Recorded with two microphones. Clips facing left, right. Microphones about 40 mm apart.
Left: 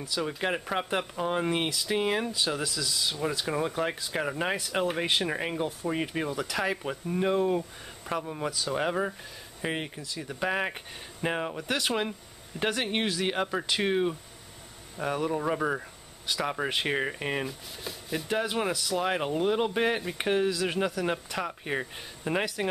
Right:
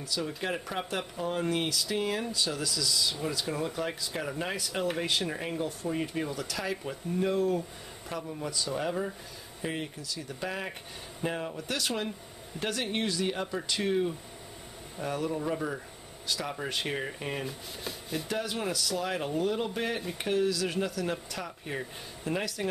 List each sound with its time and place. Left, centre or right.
0.0 s speech: left
5.9 s speech: left
15.0 s speech: left
17.5 s speech: centre
18.3 s speech: left